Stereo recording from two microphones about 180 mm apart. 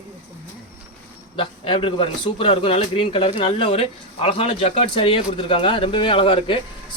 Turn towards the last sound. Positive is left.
turn(degrees=30)  # may be behind; listen again after turning